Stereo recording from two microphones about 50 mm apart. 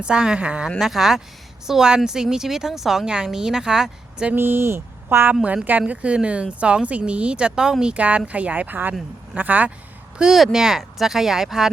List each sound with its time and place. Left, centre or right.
0.0 s speech: centre
0.8 s speech: centre
4.4 s speech: right
5.3 s speech: right
7.9 s speech: right
10.3 s speech: centre